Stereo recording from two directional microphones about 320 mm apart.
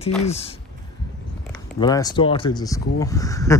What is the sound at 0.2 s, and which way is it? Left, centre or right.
Speech, centre.